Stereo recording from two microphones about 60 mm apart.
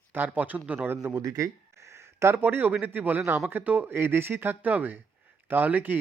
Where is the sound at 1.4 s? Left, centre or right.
Right.